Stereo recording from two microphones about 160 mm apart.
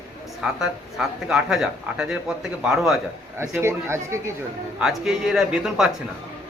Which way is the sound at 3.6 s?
15° right (ahead or behind).